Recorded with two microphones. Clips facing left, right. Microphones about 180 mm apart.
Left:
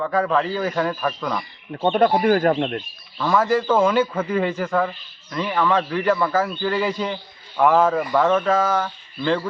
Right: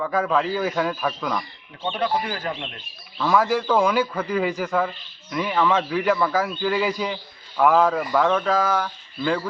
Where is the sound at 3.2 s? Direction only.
Centre (ahead or behind).